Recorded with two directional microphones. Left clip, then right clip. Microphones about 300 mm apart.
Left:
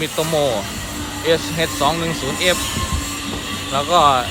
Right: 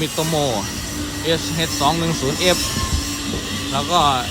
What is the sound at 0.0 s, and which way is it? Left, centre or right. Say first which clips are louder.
Speech: left 2 dB; centre.